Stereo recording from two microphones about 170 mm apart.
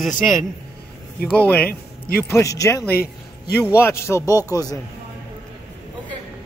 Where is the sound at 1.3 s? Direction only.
10° left (ahead or behind).